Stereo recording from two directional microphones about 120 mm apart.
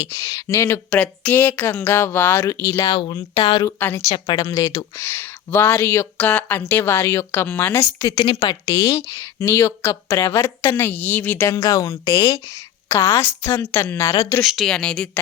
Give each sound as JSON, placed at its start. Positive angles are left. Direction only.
{"t": 0.0, "sound": "a woman's voice", "side_deg": 25}
{"t": 0.9, "sound": "speech", "side_deg": 10}
{"t": 2.9, "sound": "speech", "side_deg": 45}
{"t": 3.8, "sound": "speech", "side_deg": 15}
{"t": 4.1, "sound": "speech", "side_deg": 40}
{"t": 4.9, "sound": "speech", "side_deg": 15}
{"t": 8.3, "sound": "a woman's voice", "side_deg": 40}
{"t": 11.5, "sound": "a woman's voice", "side_deg": 30}
{"t": 14.4, "sound": "speech", "side_deg": 0}